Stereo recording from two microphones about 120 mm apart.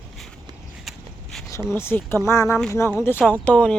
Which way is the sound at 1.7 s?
20° left (ahead or behind).